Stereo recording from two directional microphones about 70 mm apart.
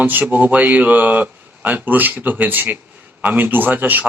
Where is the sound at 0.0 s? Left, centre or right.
Right.